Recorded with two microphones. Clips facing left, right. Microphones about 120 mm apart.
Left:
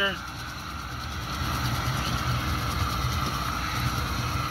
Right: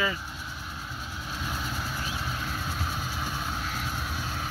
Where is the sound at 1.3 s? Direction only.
60° left (ahead or behind).